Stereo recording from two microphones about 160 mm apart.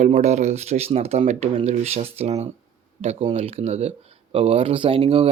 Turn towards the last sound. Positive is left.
turn(degrees=-35)  # may be behind; listen again after turning